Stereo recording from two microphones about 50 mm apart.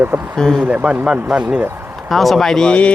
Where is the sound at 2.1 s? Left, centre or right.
Centre.